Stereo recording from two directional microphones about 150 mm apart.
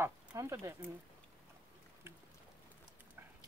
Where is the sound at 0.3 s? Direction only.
20° right (ahead or behind).